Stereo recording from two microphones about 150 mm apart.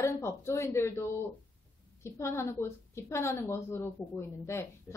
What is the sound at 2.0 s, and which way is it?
A woman's voice, 15° left (ahead or behind).